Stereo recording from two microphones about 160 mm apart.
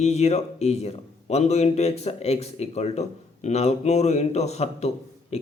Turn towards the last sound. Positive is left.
turn(degrees=40)  # may be behind; listen again after turning